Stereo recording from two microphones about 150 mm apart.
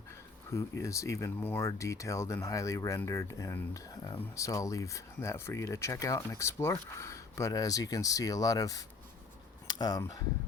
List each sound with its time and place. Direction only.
0.5 s speech: 20° left (ahead or behind)
9.6 s a sound: 25° left (ahead or behind)
10.0 s speech: 25° left (ahead or behind)